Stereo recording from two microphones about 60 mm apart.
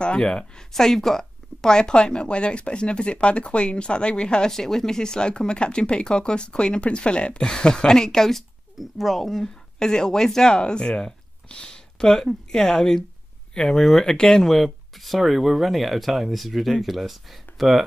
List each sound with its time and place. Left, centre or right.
0.0 s speech: centre